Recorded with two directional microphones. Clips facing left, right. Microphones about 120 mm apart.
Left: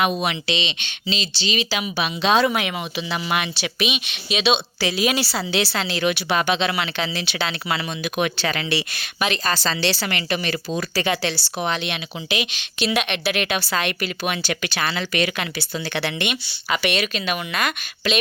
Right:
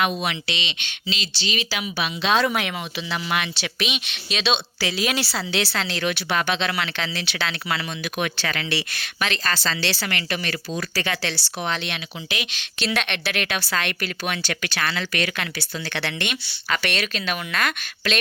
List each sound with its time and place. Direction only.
0.0 s speech: 20° left (ahead or behind)
2.4 s speech: 5° left (ahead or behind)